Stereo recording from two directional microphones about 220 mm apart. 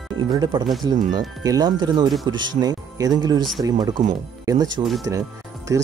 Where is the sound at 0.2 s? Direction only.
20° right (ahead or behind).